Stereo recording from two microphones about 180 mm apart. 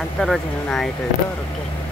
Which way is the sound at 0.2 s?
Centre (ahead or behind).